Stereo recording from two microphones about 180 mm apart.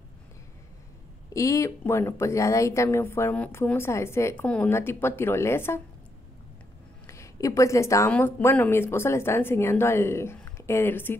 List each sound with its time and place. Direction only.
1.3 s speech: 15° left (ahead or behind)
7.1 s a woman's voice: 15° left (ahead or behind)